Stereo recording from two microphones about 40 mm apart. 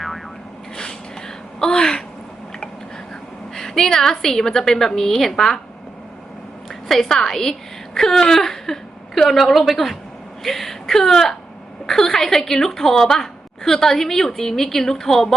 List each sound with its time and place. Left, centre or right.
0.8 s a sound: centre
3.5 s a woman's voice: centre
6.7 s a woman's voice: centre